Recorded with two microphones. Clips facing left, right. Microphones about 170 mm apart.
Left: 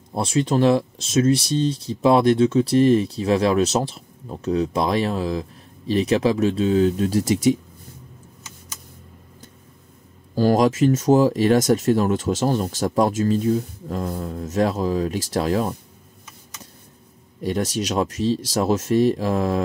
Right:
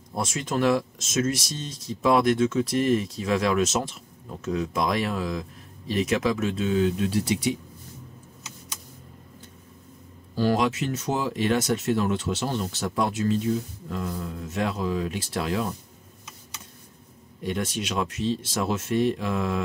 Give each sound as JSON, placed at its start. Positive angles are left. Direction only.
{"t": 0.1, "sound": "speech", "side_deg": 30}
{"t": 10.3, "sound": "speech", "side_deg": 40}
{"t": 17.4, "sound": "speech", "side_deg": 40}